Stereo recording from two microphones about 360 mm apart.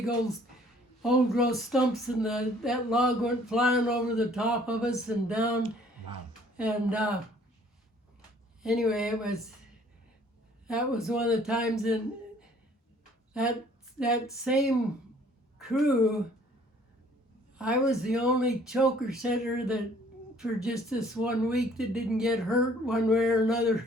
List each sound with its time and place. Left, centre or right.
1.0 s speech: centre
6.6 s speech: centre
8.6 s speech: centre
10.7 s speech: centre
14.0 s a woman's voice: centre
17.6 s speech: centre